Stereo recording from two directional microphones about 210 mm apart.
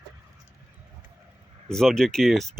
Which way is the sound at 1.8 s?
Centre (ahead or behind).